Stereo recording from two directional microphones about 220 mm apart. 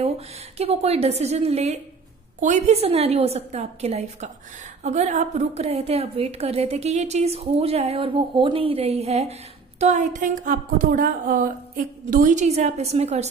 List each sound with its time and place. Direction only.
0.6 s a woman's voice: 30° right (ahead or behind)